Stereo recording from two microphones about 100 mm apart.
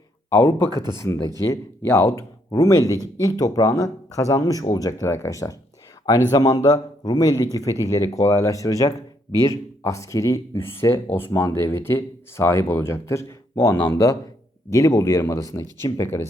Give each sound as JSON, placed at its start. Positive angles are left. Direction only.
{"t": 0.3, "sound": "speech", "side_deg": 25}